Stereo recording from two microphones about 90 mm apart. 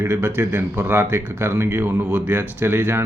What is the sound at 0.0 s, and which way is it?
Speech, 25° right (ahead or behind).